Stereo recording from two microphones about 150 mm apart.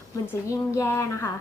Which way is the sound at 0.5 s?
20° left (ahead or behind).